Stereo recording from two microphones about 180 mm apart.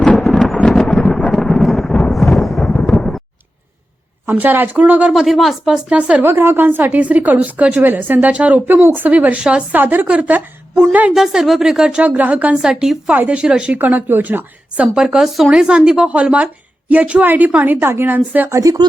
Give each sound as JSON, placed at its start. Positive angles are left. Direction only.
{"t": 0.0, "sound": "thunder", "side_deg": 0}
{"t": 4.3, "sound": "speech", "side_deg": -10}